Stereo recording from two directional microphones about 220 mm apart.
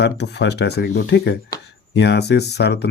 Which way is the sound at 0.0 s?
50° left (ahead or behind).